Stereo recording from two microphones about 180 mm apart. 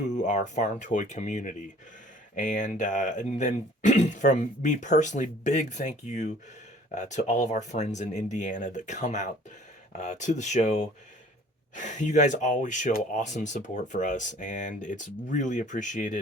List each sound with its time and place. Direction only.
0.1 s speech: 40° left (ahead or behind)